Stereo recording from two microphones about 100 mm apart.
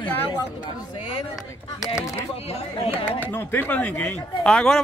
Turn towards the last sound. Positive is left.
turn(degrees=5)  # may be behind; listen again after turning